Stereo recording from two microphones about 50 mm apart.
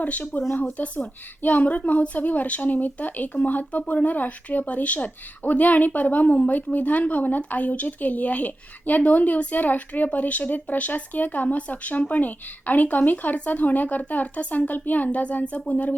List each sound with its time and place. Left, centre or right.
0.0 s a woman's voice: left